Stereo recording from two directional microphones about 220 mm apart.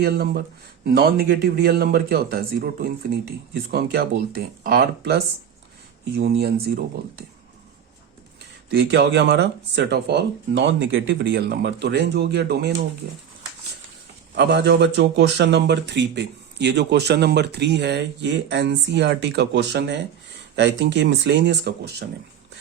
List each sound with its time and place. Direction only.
0.0 s speech: 45° right (ahead or behind)
6.1 s speech: 45° right (ahead or behind)
8.9 s speech: 50° right (ahead or behind)
14.3 s speech: 50° right (ahead or behind)